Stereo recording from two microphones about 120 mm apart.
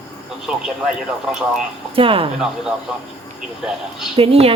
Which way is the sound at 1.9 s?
50° right (ahead or behind).